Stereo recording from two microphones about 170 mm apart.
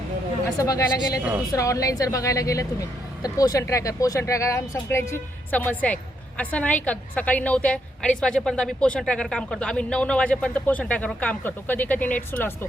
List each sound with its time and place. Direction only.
0.6 s a woman's voice: 20° left (ahead or behind)